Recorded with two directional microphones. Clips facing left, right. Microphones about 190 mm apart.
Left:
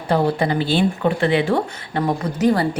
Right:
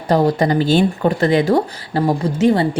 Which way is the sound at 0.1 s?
40° right (ahead or behind).